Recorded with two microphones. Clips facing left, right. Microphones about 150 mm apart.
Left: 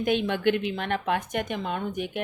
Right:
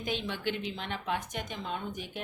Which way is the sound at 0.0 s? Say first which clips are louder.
Left 10 dB; 60° left (ahead or behind).